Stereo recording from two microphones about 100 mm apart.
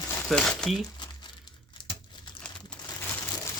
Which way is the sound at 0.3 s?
5° left (ahead or behind).